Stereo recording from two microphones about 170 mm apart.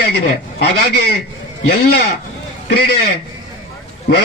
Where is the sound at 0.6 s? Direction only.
75° left (ahead or behind).